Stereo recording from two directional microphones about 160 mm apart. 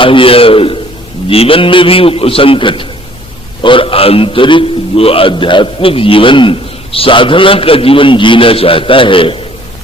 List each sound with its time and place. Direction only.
0.0 s a man's voice: 35° left (ahead or behind)